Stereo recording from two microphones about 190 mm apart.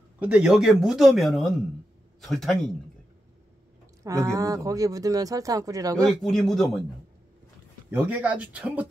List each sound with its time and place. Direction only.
0.2 s speech: 5° right (ahead or behind)
4.0 s speech: 15° right (ahead or behind)
6.2 s speech: centre (ahead or behind)
7.9 s speech: 10° right (ahead or behind)